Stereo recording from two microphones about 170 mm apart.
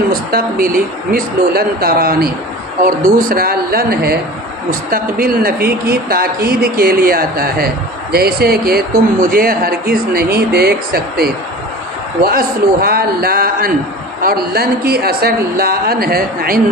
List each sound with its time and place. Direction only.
0.1 s speech: 60° right (ahead or behind)